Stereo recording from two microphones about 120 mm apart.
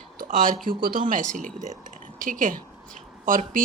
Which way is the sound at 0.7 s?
45° right (ahead or behind).